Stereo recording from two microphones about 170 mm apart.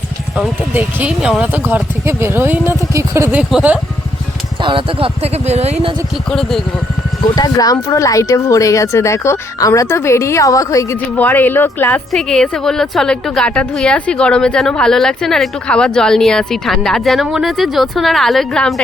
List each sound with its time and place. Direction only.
0.7 s speech: 10° right (ahead or behind)
4.6 s speech: 30° right (ahead or behind)
6.3 s a woman's voice: centre (ahead or behind)
7.3 s a woman's voice: 20° left (ahead or behind); by 18.7 s centre (ahead or behind)